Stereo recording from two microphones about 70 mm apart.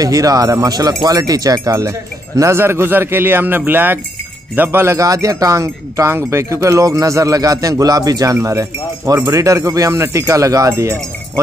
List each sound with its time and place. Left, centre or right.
0.0 s speech: right
2.6 s speech: right
4.9 s a man's voice: right